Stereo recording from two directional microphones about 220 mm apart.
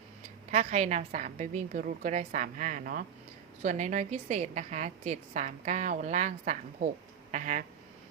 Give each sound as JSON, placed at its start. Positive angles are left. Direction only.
{"t": 0.5, "sound": "a woman's voice", "side_deg": -30}